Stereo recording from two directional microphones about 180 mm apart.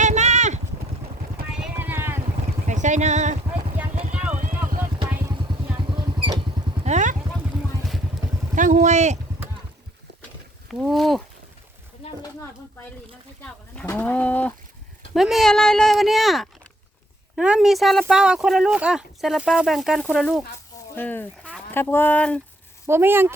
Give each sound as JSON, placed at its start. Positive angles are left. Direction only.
{"t": 0.0, "sound": "clip-clop", "side_deg": -40}
{"t": 1.6, "sound": "vehicle", "side_deg": -10}
{"t": 2.6, "sound": "speech", "side_deg": -45}
{"t": 4.1, "sound": "vehicle", "side_deg": -5}
{"t": 5.3, "sound": "vehicle", "side_deg": -25}
{"t": 6.8, "sound": "vehicle", "side_deg": -40}
{"t": 8.5, "sound": "vehicle", "side_deg": -45}
{"t": 10.7, "sound": "a sound", "side_deg": 0}
{"t": 13.4, "sound": "speech", "side_deg": 10}
{"t": 22.9, "sound": "speech", "side_deg": -15}